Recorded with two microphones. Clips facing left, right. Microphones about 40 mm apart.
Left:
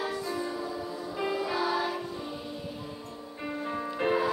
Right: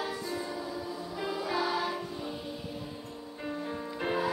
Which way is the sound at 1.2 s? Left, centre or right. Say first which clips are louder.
Left 5 dB; left.